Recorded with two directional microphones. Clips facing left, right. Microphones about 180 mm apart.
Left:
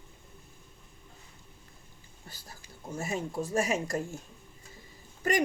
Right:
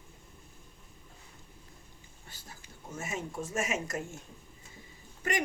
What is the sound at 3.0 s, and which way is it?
Speech, 35° left (ahead or behind).